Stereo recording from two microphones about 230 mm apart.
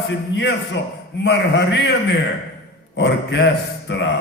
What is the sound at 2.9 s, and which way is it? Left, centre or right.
A man's voice, left.